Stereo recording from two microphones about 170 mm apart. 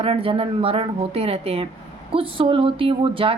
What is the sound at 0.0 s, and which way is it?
A woman's voice, 30° right (ahead or behind).